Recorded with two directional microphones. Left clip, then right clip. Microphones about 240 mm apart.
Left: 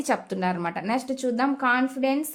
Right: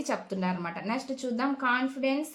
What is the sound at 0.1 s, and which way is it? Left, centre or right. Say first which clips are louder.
A woman's voice: left 7 dB; left.